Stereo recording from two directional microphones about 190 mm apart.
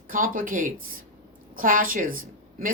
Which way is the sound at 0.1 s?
45° right (ahead or behind).